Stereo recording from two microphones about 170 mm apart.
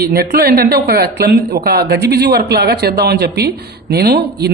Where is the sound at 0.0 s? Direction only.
65° right (ahead or behind).